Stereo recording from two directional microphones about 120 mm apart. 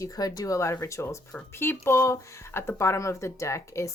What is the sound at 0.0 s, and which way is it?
Speech, 30° left (ahead or behind).